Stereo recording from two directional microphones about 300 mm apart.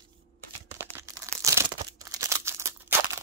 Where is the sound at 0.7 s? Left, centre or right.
Centre.